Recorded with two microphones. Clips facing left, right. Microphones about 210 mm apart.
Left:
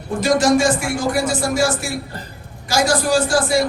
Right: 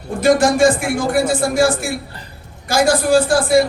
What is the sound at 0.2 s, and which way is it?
A woman's voice, 55° right (ahead or behind).